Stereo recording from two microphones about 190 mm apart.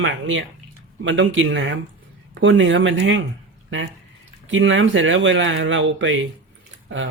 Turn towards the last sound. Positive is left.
turn(degrees=-90)